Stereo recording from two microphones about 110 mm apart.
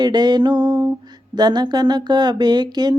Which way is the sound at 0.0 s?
40° right (ahead or behind).